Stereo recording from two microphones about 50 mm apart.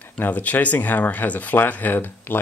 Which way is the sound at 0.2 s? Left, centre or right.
Left.